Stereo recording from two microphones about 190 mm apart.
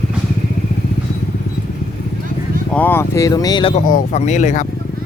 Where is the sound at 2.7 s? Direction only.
10° left (ahead or behind); by 3.8 s 30° left (ahead or behind).